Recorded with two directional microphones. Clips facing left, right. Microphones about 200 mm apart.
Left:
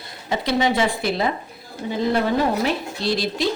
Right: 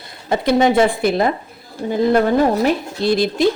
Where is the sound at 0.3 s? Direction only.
50° right (ahead or behind).